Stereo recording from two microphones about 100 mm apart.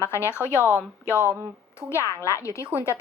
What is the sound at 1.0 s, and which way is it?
A woman's voice, 25° left (ahead or behind).